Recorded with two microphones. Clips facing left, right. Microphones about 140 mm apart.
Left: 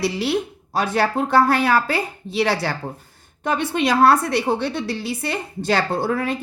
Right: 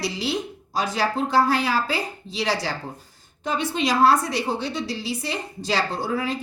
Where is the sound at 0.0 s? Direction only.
60° left (ahead or behind).